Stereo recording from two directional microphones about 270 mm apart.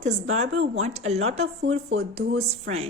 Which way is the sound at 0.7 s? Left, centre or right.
Right.